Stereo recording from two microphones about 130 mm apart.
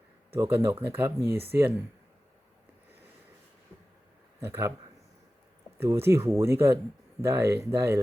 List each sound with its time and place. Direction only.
0.3 s speech: 20° right (ahead or behind)
4.4 s speech: 20° right (ahead or behind)
5.8 s speech: 20° right (ahead or behind)